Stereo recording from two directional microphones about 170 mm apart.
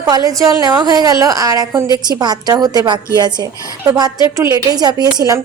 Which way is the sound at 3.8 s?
20° right (ahead or behind).